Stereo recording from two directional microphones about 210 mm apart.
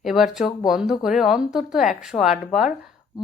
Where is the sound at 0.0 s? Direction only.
Centre (ahead or behind).